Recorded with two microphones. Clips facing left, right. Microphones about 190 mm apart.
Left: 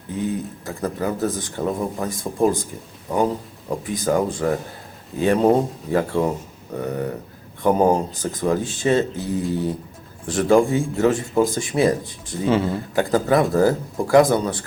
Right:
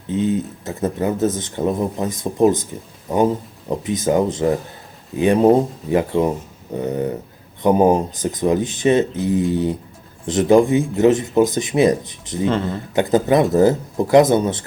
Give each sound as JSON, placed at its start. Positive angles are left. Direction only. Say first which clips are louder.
{"t": 0.1, "sound": "speech", "louder": "right 5 dB", "side_deg": -20}
{"t": 12.5, "sound": "speech", "louder": "left 2 dB", "side_deg": 5}
{"t": 12.9, "sound": "speech", "louder": "right 3 dB", "side_deg": -20}